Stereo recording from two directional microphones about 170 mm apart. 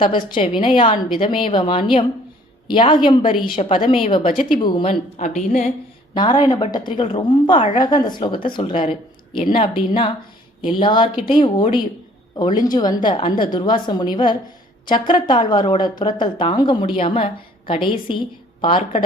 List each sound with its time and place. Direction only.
0.0 s speech: 30° left (ahead or behind)
5.2 s a woman's voice: 45° left (ahead or behind)
6.1 s speech: 25° left (ahead or behind)